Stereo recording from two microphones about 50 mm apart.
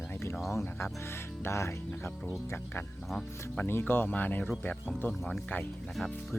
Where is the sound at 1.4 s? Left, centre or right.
Left.